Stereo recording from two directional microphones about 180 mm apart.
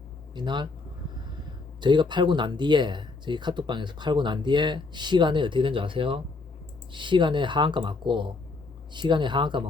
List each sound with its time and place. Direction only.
0.3 s speech: 25° right (ahead or behind)
1.8 s speech: 25° right (ahead or behind)